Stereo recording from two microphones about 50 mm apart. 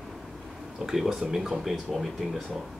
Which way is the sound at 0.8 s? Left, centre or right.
Centre.